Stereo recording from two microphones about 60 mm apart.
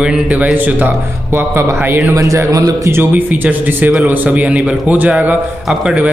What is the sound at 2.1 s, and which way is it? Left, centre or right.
Speech, right.